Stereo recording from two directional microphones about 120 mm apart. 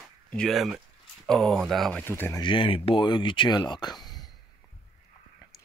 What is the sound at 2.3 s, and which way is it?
Speech, 45° left (ahead or behind).